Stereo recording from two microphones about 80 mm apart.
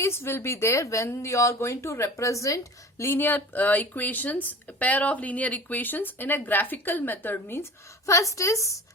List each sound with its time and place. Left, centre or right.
0.0 s a woman's voice: left
3.0 s speech: left